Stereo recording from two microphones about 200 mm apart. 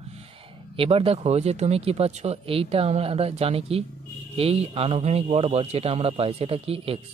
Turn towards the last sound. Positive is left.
turn(degrees=-30)  # may be behind; listen again after turning